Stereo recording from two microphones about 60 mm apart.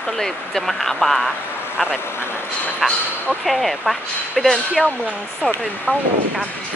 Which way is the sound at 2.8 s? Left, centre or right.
Centre.